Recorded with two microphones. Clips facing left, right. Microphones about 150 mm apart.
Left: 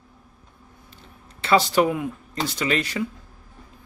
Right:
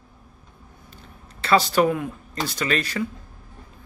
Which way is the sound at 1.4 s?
20° left (ahead or behind).